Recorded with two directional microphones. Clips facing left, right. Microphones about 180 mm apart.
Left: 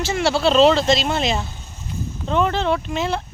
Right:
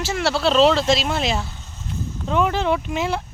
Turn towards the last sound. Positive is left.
turn(degrees=-10)  # may be behind; listen again after turning